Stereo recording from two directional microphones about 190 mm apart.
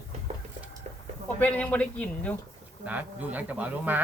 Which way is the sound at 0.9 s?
35° right (ahead or behind).